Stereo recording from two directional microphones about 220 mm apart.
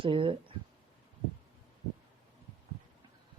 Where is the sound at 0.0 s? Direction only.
25° right (ahead or behind).